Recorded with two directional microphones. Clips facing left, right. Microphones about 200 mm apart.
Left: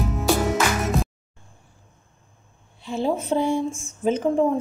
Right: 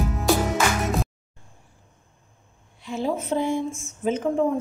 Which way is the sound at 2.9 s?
30° left (ahead or behind).